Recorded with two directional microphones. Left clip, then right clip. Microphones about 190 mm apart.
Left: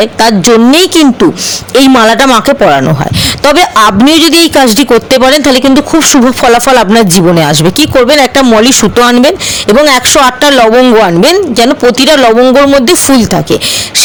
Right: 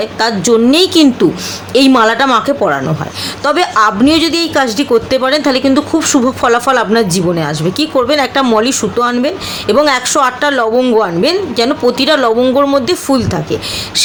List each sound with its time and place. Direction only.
0.0 s a man's voice: 40° left (ahead or behind)